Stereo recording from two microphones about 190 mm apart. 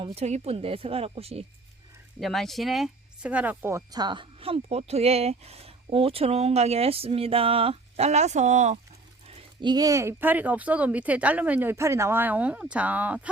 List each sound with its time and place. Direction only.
0.0 s speech: 35° right (ahead or behind)
2.2 s speech: centre (ahead or behind); by 8.8 s 40° right (ahead or behind)
9.2 s speech: 30° right (ahead or behind); by 13.3 s 5° right (ahead or behind)